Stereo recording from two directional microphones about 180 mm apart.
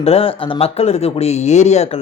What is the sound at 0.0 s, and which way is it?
Speech, 35° left (ahead or behind).